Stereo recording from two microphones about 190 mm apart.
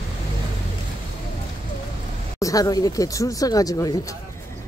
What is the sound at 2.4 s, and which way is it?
Speech, 20° left (ahead or behind).